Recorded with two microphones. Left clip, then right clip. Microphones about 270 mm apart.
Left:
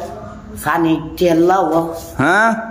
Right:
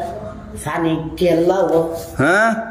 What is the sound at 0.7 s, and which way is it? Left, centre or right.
A man's voice, centre.